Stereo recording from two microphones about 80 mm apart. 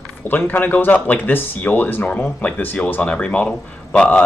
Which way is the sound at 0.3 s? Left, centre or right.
Left.